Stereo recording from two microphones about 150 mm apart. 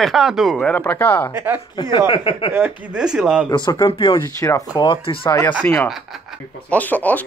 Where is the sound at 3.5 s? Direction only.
30° left (ahead or behind).